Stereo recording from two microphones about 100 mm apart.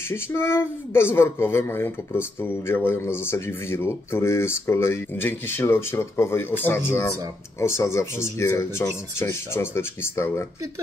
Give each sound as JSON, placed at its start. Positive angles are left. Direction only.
{"t": 0.1, "sound": "speech", "side_deg": 25}